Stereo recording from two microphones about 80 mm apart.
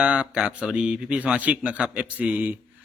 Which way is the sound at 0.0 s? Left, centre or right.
Centre.